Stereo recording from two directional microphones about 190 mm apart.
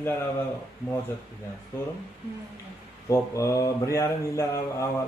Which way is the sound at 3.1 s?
15° left (ahead or behind).